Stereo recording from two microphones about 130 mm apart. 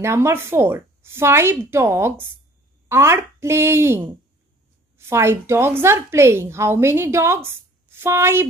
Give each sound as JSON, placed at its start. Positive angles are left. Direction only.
{"t": 0.0, "sound": "a woman's voice", "side_deg": -20}